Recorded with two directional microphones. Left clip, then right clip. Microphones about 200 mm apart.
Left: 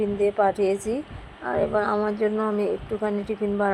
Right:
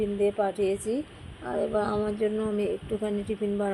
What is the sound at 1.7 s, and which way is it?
Speech, centre (ahead or behind).